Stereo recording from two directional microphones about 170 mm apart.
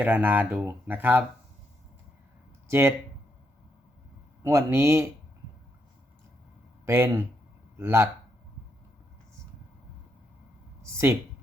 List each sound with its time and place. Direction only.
0.0 s speech: 10° right (ahead or behind)
2.6 s speech: 15° right (ahead or behind)
4.4 s speech: 15° right (ahead or behind)
6.8 s a man's voice: 15° right (ahead or behind)
10.9 s speech: 15° right (ahead or behind)